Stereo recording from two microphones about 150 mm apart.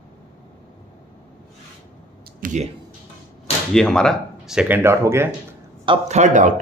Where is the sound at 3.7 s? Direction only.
5° left (ahead or behind); by 5.3 s 20° right (ahead or behind).